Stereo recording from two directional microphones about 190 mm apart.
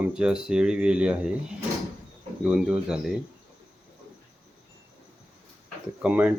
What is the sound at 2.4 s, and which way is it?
Speech, 5° right (ahead or behind).